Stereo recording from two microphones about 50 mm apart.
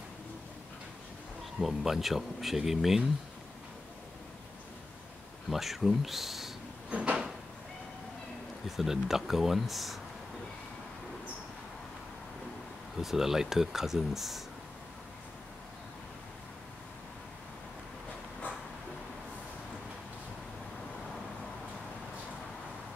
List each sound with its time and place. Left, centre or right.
1.6 s speech: centre
5.5 s speech: centre
6.9 s drawer open or close: right
8.6 s speech: centre
13.0 s speech: centre